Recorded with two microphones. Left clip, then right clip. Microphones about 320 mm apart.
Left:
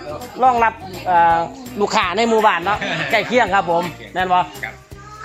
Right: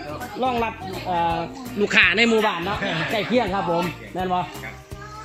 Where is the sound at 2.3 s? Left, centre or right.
Left.